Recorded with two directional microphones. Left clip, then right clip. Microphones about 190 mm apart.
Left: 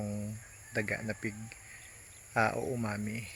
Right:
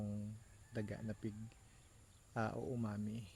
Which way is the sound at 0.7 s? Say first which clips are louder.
Left 13 dB; 15° right (ahead or behind).